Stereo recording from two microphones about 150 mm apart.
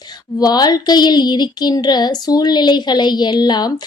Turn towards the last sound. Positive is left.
turn(degrees=30)  # may be behind; listen again after turning